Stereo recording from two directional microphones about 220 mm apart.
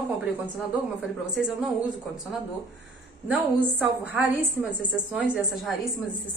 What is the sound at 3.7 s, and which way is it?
A woman's voice, 5° right (ahead or behind).